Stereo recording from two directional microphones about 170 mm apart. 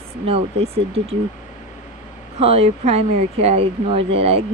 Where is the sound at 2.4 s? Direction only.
35° right (ahead or behind).